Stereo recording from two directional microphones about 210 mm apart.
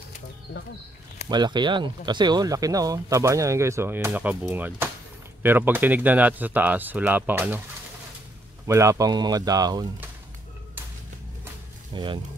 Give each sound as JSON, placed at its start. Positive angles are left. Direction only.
{"t": 1.3, "sound": "speech", "side_deg": -20}
{"t": 8.6, "sound": "speech", "side_deg": -15}
{"t": 11.9, "sound": "speech", "side_deg": -20}